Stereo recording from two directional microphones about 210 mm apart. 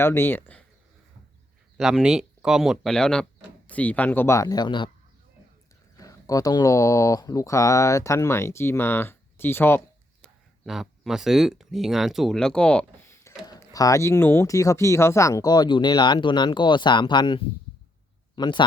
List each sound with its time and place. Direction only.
0.0 s speech: 10° left (ahead or behind)
1.8 s speech: 5° right (ahead or behind); by 4.9 s 20° left (ahead or behind)
6.0 s speech: 15° left (ahead or behind)
10.7 s speech: centre (ahead or behind); by 18.6 s 20° left (ahead or behind)